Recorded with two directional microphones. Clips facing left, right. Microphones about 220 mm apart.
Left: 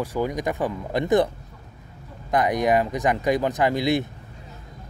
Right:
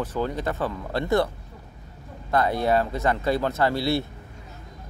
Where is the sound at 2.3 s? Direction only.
15° left (ahead or behind).